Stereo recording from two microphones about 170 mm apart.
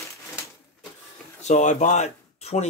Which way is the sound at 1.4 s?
45° left (ahead or behind).